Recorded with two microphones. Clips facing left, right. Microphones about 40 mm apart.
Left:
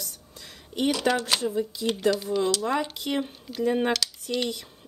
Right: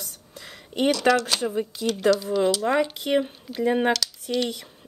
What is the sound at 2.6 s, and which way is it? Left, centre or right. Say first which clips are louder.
Speech: right 4 dB; right.